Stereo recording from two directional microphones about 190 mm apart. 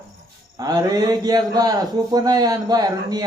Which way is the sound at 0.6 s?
20° right (ahead or behind).